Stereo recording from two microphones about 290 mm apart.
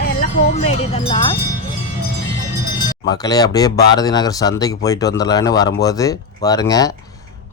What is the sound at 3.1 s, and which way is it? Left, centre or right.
Speech, centre.